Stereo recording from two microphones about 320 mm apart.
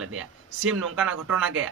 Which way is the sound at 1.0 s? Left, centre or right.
Centre.